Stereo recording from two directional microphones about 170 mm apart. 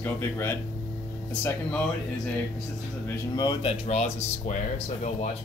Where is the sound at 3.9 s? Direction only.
40° left (ahead or behind).